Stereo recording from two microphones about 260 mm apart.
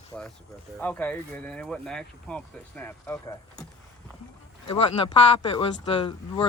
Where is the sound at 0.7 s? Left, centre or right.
Centre.